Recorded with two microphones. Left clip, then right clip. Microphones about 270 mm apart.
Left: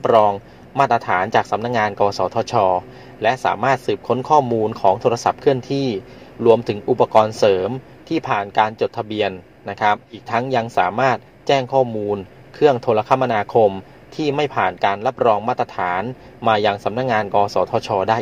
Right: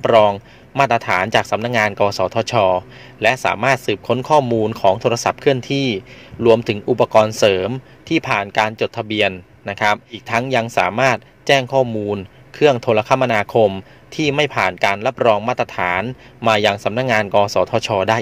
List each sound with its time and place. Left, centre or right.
0.0 s a man's voice: right